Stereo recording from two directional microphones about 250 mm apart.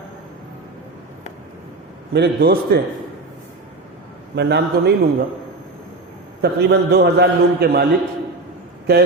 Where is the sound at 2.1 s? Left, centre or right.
Right.